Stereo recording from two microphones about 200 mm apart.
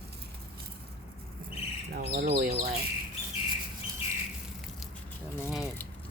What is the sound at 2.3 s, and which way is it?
Speech, 45° right (ahead or behind).